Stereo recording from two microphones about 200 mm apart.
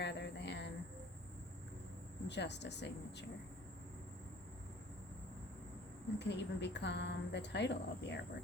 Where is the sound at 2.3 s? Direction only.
60° left (ahead or behind).